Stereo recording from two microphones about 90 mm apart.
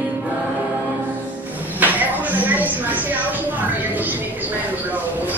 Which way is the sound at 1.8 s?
20° right (ahead or behind).